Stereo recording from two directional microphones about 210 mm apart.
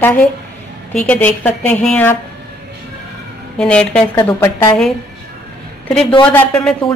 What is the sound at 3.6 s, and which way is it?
Speech, 5° left (ahead or behind).